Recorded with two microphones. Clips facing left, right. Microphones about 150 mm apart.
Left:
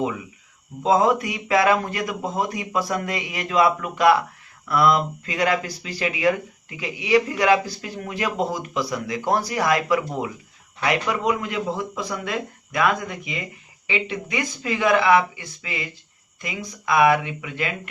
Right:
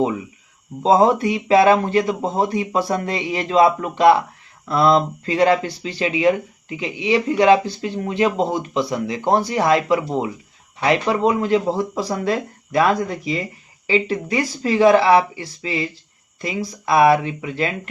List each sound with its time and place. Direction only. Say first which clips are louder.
0.8 s speech: right 4 dB; 30° right (ahead or behind)